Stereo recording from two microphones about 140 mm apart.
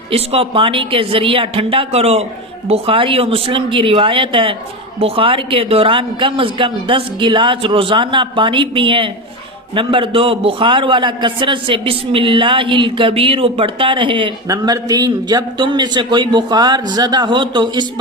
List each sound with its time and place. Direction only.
0.1 s a man's voice: 40° right (ahead or behind)
14.4 s a man's voice: 25° right (ahead or behind)